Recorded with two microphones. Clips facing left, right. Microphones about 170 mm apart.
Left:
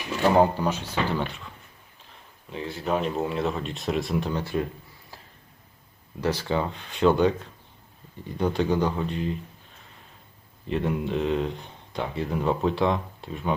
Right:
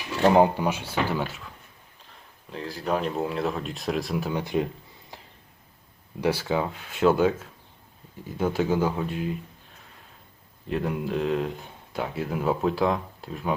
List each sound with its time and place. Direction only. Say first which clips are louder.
0.2 s speech: right 1 dB; 15° right (ahead or behind)
5.1 s a sound: right 2 dB; 20° right (ahead or behind)
6.1 s speech: right 1 dB; 10° right (ahead or behind)
10.7 s speech: left 1 dB; centre (ahead or behind)